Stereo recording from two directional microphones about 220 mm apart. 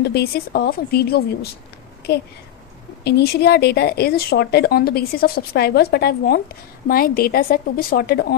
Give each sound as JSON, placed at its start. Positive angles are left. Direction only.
{"t": 0.0, "sound": "speech", "side_deg": 45}